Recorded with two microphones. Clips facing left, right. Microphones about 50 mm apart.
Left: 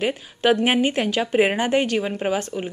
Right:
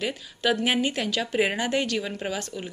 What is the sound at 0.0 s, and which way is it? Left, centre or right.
A woman's voice, left.